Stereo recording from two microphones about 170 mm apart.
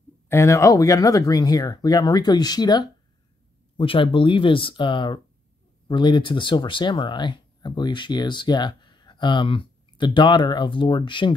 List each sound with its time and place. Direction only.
0.3 s speech: 15° left (ahead or behind)